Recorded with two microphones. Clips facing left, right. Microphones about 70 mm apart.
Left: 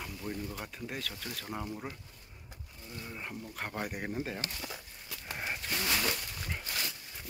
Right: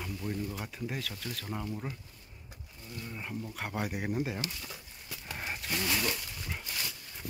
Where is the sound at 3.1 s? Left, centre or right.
Centre.